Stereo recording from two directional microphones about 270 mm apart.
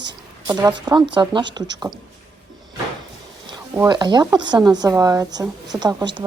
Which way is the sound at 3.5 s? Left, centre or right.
Centre.